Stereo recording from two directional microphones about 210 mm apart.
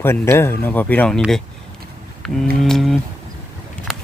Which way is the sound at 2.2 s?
5° left (ahead or behind).